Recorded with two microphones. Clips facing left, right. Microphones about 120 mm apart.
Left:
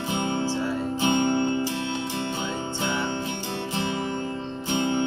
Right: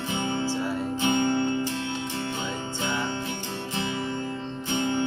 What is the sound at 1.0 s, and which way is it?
Music, 25° left (ahead or behind).